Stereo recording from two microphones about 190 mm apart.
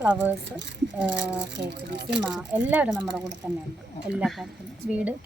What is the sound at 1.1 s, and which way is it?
Speech, 65° right (ahead or behind).